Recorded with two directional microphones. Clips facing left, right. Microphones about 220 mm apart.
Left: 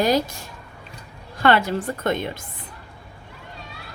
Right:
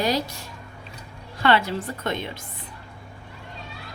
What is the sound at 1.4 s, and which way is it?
Speech, 50° left (ahead or behind).